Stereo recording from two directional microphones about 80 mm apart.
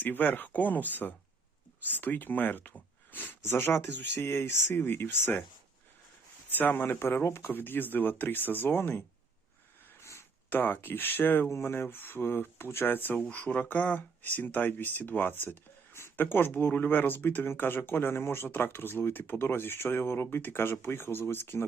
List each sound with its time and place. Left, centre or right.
0.0 s speech: left
6.5 s speech: left
10.0 s a sound: left
10.5 s speech: left